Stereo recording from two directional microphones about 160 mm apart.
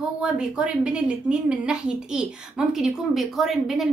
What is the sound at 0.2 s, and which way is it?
A woman's voice, 5° right (ahead or behind).